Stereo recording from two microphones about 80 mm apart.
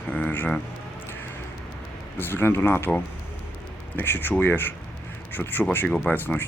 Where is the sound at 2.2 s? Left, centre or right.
Left.